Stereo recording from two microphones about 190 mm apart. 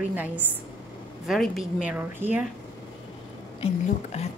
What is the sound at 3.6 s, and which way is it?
Speech, 35° left (ahead or behind).